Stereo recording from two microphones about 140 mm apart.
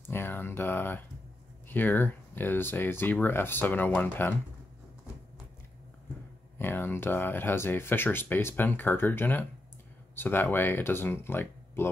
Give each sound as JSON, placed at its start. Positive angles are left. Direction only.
{"t": 0.1, "sound": "a sound", "side_deg": 15}
{"t": 1.7, "sound": "speech", "side_deg": 15}
{"t": 6.6, "sound": "speech", "side_deg": 15}